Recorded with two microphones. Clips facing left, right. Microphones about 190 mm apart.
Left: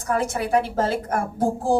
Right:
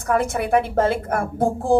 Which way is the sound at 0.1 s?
60° right (ahead or behind).